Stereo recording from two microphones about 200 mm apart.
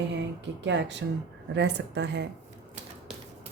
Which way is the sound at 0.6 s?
60° right (ahead or behind).